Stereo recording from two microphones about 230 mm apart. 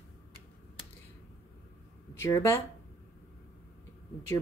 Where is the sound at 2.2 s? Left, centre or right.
Centre.